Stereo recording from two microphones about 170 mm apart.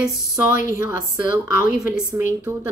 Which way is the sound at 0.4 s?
15° right (ahead or behind).